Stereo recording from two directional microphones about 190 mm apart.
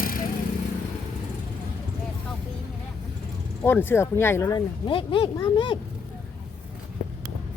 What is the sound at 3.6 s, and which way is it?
Speech, 10° left (ahead or behind).